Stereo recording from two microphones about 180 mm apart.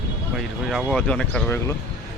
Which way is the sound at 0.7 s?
Centre (ahead or behind).